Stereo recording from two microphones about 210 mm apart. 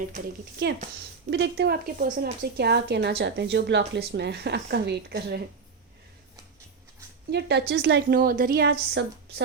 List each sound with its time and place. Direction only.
1.3 s a woman's voice: 55° right (ahead or behind)
7.3 s a woman's voice: 55° right (ahead or behind)